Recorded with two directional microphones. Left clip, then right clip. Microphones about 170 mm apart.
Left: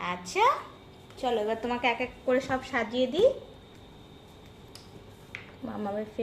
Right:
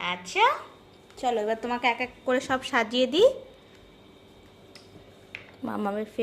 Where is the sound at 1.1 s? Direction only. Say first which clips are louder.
Right 2 dB; 25° right (ahead or behind).